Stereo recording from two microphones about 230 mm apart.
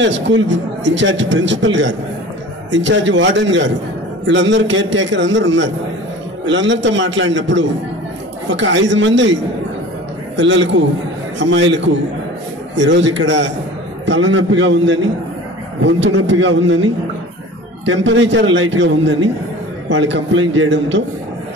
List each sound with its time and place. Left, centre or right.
0.0 s a man's voice: right
10.3 s a man's voice: right
17.8 s a man's voice: right